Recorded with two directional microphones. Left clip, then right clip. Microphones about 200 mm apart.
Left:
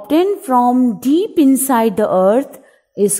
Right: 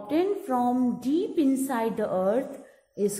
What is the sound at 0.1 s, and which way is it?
Speech, 45° left (ahead or behind).